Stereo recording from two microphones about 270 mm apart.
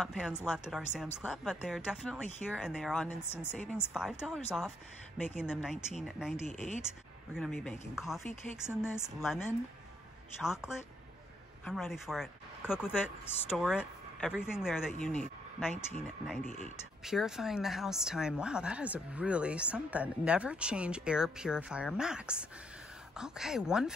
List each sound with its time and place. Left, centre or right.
0.0 s a woman's voice: centre
6.4 s speech: right
7.3 s a woman's voice: centre
10.4 s a woman's voice: centre
16.4 s speech: right
17.0 s a woman's voice: centre